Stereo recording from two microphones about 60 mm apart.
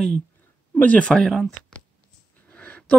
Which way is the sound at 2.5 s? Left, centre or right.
Left.